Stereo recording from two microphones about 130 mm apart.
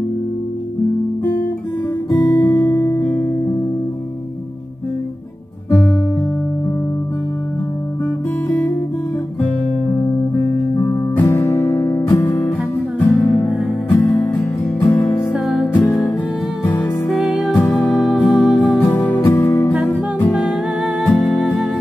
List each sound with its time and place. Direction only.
2.2 s music: 20° left (ahead or behind)
10.9 s music: 20° left (ahead or behind)
13.0 s music: 15° left (ahead or behind)
15.3 s music: 5° right (ahead or behind)
15.7 s music: 15° left (ahead or behind)
17.1 s music: centre (ahead or behind)
17.6 s music: 10° left (ahead or behind)
20.2 s music: centre (ahead or behind)